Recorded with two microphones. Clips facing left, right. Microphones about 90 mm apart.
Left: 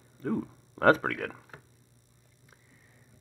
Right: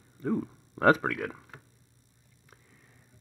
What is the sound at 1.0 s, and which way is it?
Speech, 15° right (ahead or behind).